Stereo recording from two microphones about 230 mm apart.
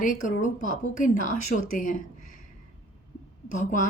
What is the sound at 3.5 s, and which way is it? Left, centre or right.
Speech, left.